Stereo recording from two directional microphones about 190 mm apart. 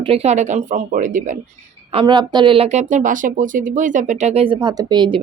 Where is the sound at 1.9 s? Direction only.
25° right (ahead or behind).